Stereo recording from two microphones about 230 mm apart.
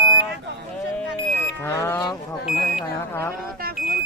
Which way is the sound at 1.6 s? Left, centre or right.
Centre.